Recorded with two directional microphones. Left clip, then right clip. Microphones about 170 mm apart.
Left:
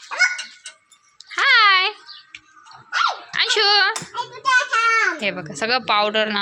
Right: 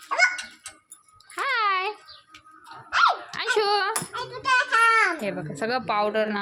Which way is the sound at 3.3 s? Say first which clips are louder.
Left 6 dB; 15° right (ahead or behind).